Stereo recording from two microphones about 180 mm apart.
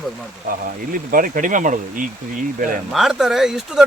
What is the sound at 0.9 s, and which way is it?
Speech, 50° right (ahead or behind).